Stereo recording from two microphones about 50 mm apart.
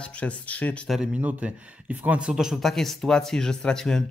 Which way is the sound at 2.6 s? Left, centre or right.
Centre.